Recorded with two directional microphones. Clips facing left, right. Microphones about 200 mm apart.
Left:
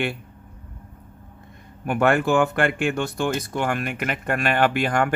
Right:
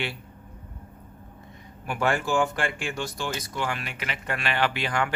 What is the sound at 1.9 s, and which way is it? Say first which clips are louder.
Speech: left 6 dB; 60° left (ahead or behind).